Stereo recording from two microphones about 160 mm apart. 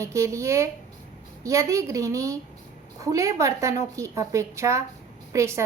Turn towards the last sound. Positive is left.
turn(degrees=-20)  # may be behind; listen again after turning